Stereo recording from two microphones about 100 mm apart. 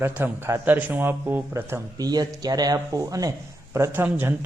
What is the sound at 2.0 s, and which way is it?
Speech, 40° right (ahead or behind).